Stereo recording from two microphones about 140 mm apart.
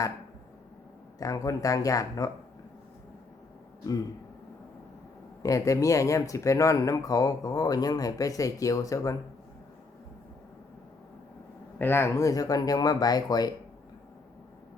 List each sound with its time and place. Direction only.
1.2 s speech: 25° left (ahead or behind)
5.4 s speech: 25° left (ahead or behind)
11.8 s speech: 15° left (ahead or behind)